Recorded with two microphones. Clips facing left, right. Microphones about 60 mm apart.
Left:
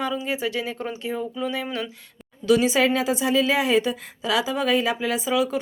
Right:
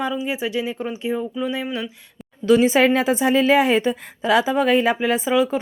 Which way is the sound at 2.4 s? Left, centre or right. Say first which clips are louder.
Right 4 dB; right.